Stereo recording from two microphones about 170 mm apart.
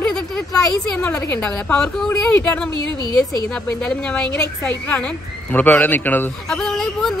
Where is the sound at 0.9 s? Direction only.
10° left (ahead or behind).